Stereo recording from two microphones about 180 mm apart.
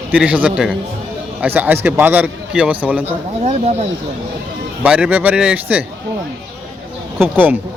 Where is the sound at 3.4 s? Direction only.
40° right (ahead or behind).